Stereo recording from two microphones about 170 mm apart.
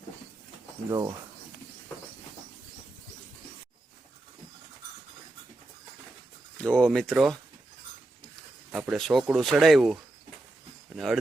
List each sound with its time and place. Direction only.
0.9 s speech: 25° right (ahead or behind)
6.6 s speech: 5° left (ahead or behind)
8.7 s speech: centre (ahead or behind)